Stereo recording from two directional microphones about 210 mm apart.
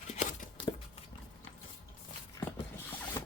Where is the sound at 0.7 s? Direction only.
25° left (ahead or behind).